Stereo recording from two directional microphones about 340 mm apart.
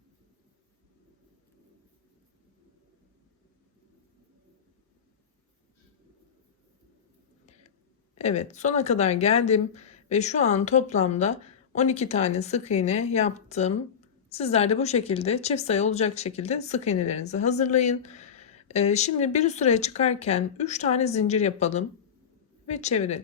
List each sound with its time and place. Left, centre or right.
8.2 s speech: centre